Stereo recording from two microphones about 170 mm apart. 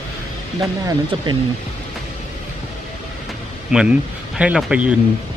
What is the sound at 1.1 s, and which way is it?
Speech, 30° right (ahead or behind).